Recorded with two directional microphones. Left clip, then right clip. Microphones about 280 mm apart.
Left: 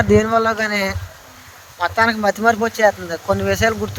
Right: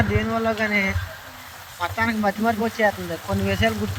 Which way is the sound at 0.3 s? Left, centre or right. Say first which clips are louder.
Left 5 dB; centre.